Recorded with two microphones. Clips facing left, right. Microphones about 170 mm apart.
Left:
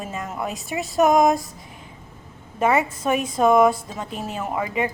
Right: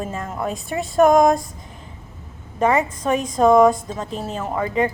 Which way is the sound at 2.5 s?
10° left (ahead or behind).